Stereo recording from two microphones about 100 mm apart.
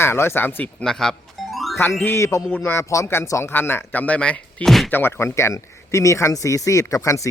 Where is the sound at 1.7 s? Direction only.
25° left (ahead or behind).